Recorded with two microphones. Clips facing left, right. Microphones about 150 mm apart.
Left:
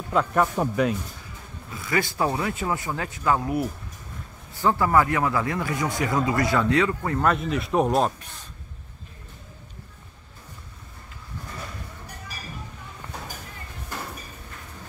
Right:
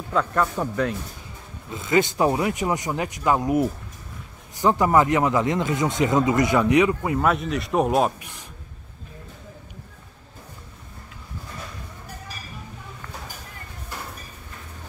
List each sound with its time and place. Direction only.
0.1 s speech: 10° left (ahead or behind)
1.7 s speech: 20° right (ahead or behind)
7.2 s a man's voice: centre (ahead or behind)